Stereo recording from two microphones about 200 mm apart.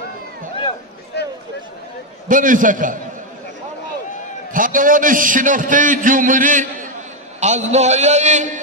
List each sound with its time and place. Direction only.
1.1 s a sound: 55° left (ahead or behind)
2.2 s a man's voice: 40° right (ahead or behind)
4.5 s a man's voice: 45° right (ahead or behind)